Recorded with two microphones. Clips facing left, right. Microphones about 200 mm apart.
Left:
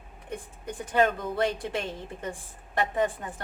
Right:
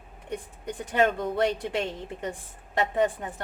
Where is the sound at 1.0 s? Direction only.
20° right (ahead or behind).